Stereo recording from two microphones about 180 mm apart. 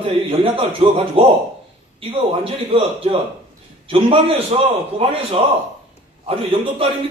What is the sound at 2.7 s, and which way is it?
A man's voice, 30° right (ahead or behind).